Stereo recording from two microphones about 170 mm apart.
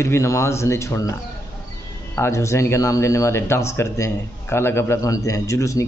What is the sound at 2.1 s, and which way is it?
Speech, 15° left (ahead or behind).